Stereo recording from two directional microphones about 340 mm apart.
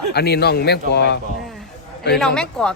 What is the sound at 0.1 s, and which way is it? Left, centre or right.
A man's voice, left.